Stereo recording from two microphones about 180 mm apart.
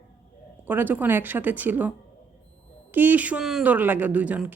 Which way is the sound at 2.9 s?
10° right (ahead or behind).